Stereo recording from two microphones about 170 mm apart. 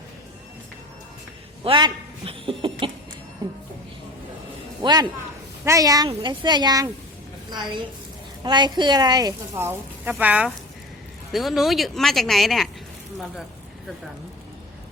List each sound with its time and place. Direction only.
1.6 s a sound: 30° right (ahead or behind)
4.8 s a man's voice: 25° right (ahead or behind)
8.4 s speech: 25° right (ahead or behind); by 12.6 s centre (ahead or behind)